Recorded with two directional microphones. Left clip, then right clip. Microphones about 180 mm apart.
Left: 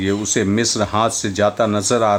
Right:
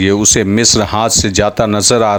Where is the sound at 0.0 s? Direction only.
40° right (ahead or behind).